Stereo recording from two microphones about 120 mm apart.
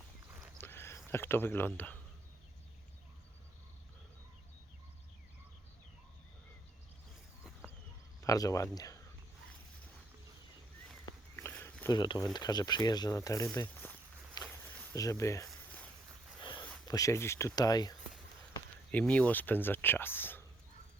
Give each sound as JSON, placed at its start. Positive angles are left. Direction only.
{"t": 0.6, "sound": "speech", "side_deg": 20}
{"t": 8.2, "sound": "speech", "side_deg": 30}
{"t": 11.9, "sound": "speech", "side_deg": 35}
{"t": 14.5, "sound": "walk", "side_deg": 15}
{"t": 14.9, "sound": "speech", "side_deg": 30}
{"t": 16.4, "sound": "a sound", "side_deg": 45}
{"t": 16.8, "sound": "speech", "side_deg": 30}
{"t": 18.9, "sound": "speech", "side_deg": 10}